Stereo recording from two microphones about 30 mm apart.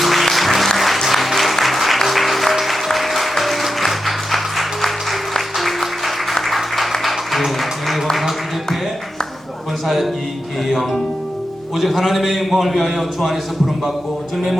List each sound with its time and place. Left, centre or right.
0.0 s music: centre
1.0 s applause: centre
1.6 s music: centre
6.4 s applause: centre
7.0 s music: centre
8.1 s a sound: centre
9.8 s music: centre
11.8 s a man's voice: centre